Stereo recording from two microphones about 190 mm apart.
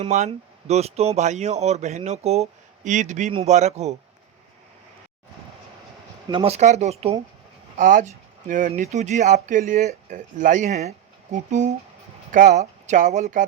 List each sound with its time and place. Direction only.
0.0 s speech: 35° right (ahead or behind)
6.2 s speech: 30° right (ahead or behind)